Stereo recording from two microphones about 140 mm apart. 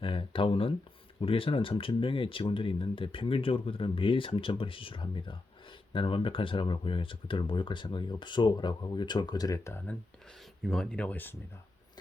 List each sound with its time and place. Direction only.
0.0 s speech: 40° left (ahead or behind); by 9.9 s 20° left (ahead or behind)
10.7 s speech: 5° left (ahead or behind)